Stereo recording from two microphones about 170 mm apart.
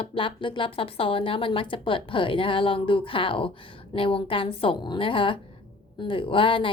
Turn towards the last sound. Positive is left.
turn(degrees=30)  # may be behind; listen again after turning